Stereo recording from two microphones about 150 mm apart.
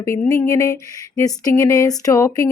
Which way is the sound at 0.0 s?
20° left (ahead or behind).